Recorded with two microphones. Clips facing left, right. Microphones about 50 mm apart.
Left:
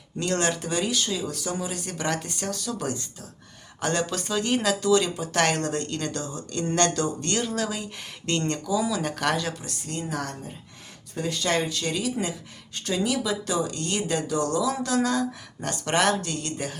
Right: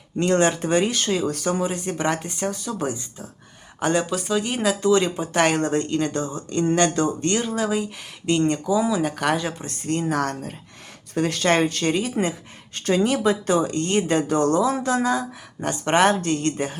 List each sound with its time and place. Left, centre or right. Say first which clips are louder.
0.2 s speech: right 6 dB; right
0.7 s speech: right 6 dB; right
1.7 s speech: right 5 dB; right; by 4.8 s centre
4.8 s speech: right 3 dB; right
5.4 s speech: right 4 dB; centre
7.3 s speech: right 5 dB; centre
8.6 s speech: right 5 dB; right
9.0 s speech: right 4 dB; centre
9.3 s speech: right 3 dB; right
9.6 s speech: right 8 dB; right
15.0 s speech: right 2 dB; centre; by 16.7 s right